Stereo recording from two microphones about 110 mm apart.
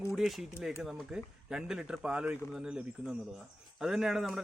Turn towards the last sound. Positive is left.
turn(degrees=-5)  # may be behind; listen again after turning